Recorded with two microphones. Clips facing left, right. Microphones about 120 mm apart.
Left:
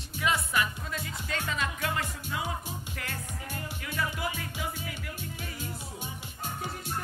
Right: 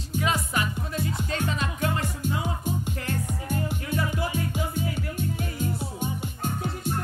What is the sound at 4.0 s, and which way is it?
Music, 30° right (ahead or behind).